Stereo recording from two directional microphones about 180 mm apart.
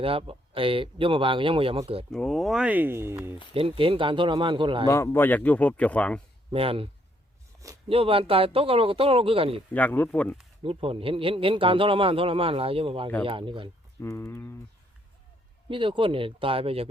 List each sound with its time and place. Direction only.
0.0 s speech: 30° right (ahead or behind)
2.1 s speech: centre (ahead or behind); by 3.3 s 15° right (ahead or behind)
3.5 s speech: 30° right (ahead or behind)
4.9 s speech: 15° left (ahead or behind)
6.5 s a man's voice: 30° right (ahead or behind)
7.9 s a man's voice: 30° right (ahead or behind)
9.7 s speech: 10° left (ahead or behind)
10.6 s a man's voice: 30° right (ahead or behind)
14.0 s speech: 15° left (ahead or behind)
15.7 s speech: 30° right (ahead or behind)